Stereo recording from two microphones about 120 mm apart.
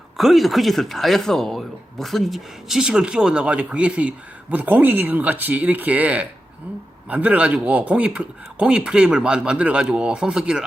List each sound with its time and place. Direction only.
0.2 s speech: centre (ahead or behind)